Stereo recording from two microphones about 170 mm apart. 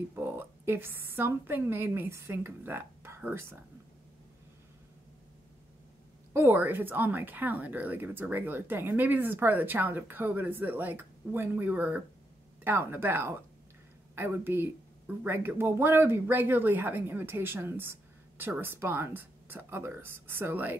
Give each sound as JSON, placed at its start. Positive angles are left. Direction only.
{"t": 0.1, "sound": "a woman's voice", "side_deg": -10}
{"t": 6.3, "sound": "speech", "side_deg": -15}